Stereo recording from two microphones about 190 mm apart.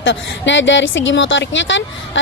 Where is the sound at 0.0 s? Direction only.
75° left (ahead or behind).